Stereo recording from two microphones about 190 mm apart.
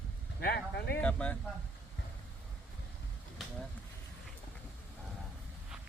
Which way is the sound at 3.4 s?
Centre (ahead or behind).